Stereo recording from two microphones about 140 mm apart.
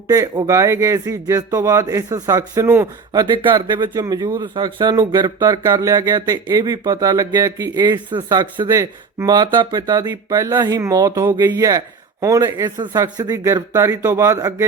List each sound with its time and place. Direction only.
0.1 s speech: 25° right (ahead or behind)